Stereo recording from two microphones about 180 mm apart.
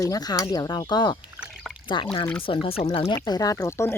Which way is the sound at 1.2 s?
5° right (ahead or behind).